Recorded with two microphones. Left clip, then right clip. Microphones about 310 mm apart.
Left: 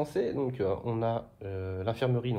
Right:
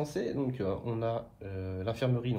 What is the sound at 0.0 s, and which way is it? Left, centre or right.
Speech, left.